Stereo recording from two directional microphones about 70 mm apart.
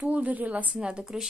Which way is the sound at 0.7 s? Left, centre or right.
Centre.